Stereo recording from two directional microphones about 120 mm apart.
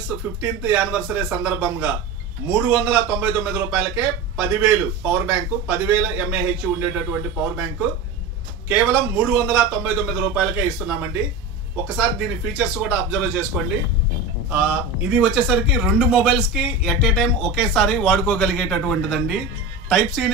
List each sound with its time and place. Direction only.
0.4 s a man's voice: 10° right (ahead or behind)
8.6 s a man's voice: 15° right (ahead or behind)
14.5 s a man's voice: 5° right (ahead or behind)